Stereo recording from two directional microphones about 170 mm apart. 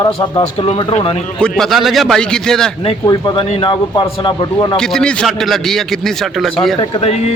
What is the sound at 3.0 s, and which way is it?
A man's voice, 25° left (ahead or behind).